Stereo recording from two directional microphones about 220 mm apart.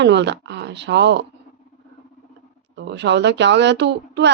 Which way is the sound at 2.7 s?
50° right (ahead or behind).